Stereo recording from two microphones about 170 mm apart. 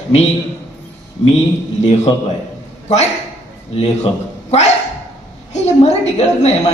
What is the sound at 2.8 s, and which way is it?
Speech, 40° left (ahead or behind).